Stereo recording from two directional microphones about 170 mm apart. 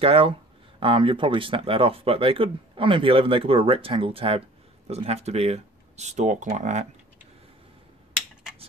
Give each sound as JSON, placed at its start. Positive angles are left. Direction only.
{"t": 0.0, "sound": "speech", "side_deg": -35}